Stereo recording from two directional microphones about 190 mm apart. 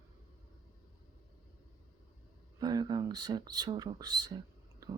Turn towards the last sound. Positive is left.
turn(degrees=-20)  # may be behind; listen again after turning